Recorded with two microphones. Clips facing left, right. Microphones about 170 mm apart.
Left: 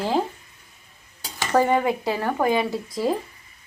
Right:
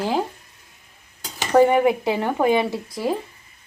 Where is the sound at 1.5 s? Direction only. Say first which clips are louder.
Right 4 dB; 15° right (ahead or behind).